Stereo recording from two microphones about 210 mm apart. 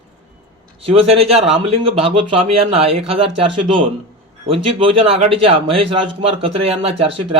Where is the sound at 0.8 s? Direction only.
30° right (ahead or behind).